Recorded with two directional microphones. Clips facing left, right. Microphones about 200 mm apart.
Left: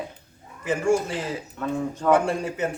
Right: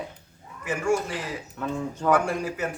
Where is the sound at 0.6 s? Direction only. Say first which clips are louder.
Left 3 dB; 30° left (ahead or behind).